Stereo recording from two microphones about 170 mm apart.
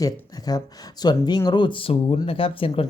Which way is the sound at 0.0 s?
20° left (ahead or behind).